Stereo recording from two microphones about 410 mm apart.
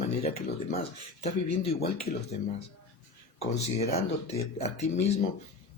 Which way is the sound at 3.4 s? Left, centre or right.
Centre.